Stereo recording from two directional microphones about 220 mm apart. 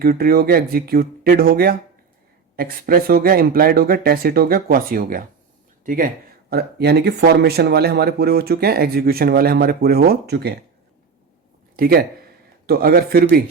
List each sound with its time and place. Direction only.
0.0 s speech: 45° right (ahead or behind)
11.8 s speech: 45° right (ahead or behind)